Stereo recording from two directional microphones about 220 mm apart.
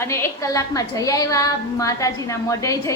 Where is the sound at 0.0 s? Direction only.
10° left (ahead or behind).